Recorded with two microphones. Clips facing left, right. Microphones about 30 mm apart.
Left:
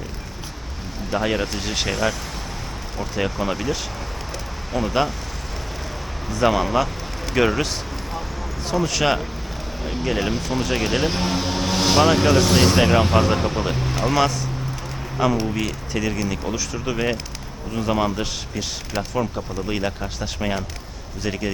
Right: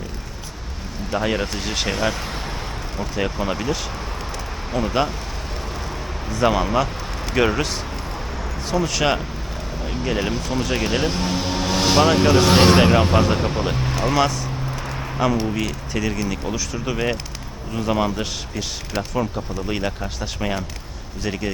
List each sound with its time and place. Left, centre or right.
1.1 s speech: centre
3.0 s speech: centre
6.2 s speech: centre
8.7 s speech: centre
12.5 s speech: right
13.1 s speech: centre